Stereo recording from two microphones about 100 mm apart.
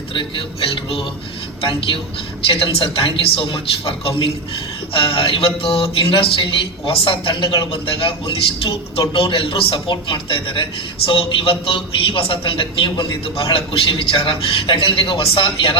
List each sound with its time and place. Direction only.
0.1 s a man's voice: 55° left (ahead or behind)
2.5 s a man's voice: 65° left (ahead or behind)